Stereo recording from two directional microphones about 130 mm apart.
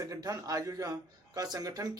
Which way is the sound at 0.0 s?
25° right (ahead or behind).